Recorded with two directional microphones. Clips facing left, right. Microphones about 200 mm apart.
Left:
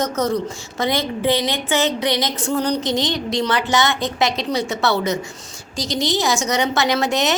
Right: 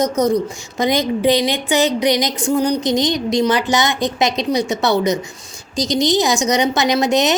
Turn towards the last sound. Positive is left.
turn(degrees=-20)  # may be behind; listen again after turning